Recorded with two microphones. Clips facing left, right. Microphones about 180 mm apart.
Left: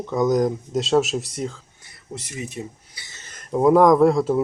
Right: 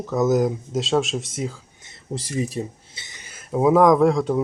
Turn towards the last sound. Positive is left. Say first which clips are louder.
# left 1 dB
turn(degrees=0)  # may be behind; listen again after turning